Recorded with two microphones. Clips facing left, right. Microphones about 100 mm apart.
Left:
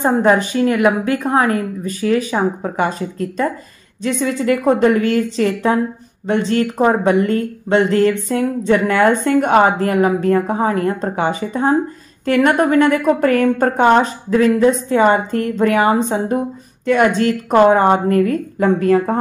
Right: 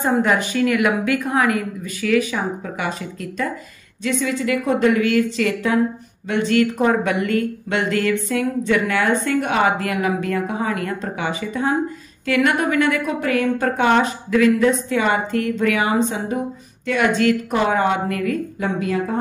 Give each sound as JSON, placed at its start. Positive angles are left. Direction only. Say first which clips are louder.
{"t": 0.0, "sound": "a woman's voice", "louder": "left 4 dB", "side_deg": 35}